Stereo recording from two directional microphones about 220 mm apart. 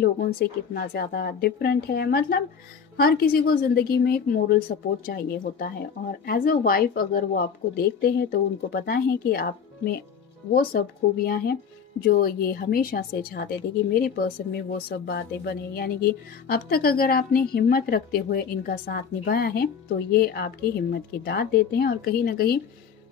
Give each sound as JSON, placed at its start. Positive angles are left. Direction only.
{"t": 0.0, "sound": "a woman's voice", "side_deg": 45}